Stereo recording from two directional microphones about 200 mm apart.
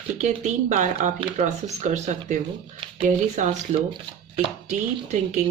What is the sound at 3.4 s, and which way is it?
Speech, 35° right (ahead or behind).